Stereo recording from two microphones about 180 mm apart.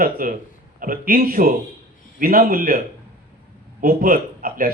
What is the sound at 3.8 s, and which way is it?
Speech, 55° right (ahead or behind).